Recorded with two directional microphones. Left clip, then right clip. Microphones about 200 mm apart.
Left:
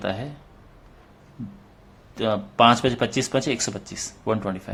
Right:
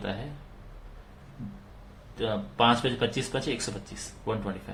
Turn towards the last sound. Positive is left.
turn(degrees=45)  # may be behind; listen again after turning